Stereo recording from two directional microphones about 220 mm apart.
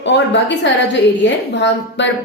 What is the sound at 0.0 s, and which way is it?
A woman's voice, 55° left (ahead or behind).